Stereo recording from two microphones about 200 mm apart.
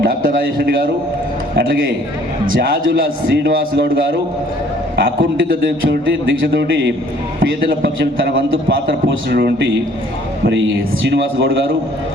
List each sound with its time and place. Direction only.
0.0 s a man's voice: 45° right (ahead or behind)
3.3 s a man's voice: 55° right (ahead or behind)
4.9 s a man's voice: 45° right (ahead or behind)
9.0 s a man's voice: 60° right (ahead or behind)
11.1 s a man's voice: 55° right (ahead or behind)